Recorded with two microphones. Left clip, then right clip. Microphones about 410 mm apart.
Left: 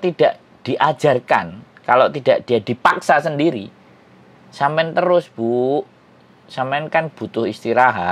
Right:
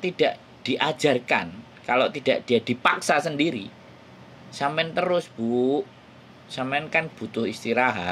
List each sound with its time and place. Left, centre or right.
0.0 s speech: left
5.5 s speech: left
6.5 s speech: left